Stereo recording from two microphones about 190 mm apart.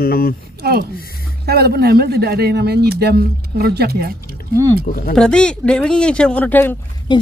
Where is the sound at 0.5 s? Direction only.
55° right (ahead or behind).